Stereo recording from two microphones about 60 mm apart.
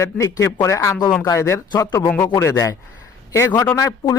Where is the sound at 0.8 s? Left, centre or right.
Left.